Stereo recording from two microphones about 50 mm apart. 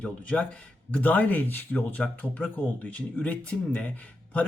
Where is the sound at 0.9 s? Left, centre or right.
Left.